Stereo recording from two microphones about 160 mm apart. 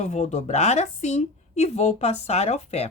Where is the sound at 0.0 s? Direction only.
45° left (ahead or behind).